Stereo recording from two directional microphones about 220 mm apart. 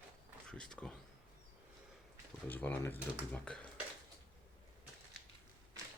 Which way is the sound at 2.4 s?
10° left (ahead or behind).